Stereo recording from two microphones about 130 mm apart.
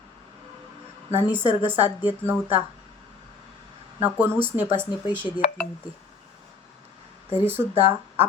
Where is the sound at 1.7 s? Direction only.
15° right (ahead or behind).